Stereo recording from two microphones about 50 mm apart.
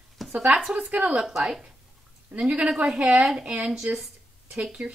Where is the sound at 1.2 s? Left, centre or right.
Centre.